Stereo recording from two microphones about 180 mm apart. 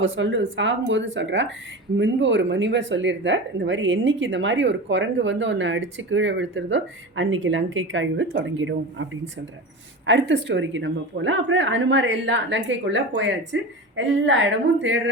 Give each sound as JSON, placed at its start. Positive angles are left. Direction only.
{"t": 0.0, "sound": "speech", "side_deg": -90}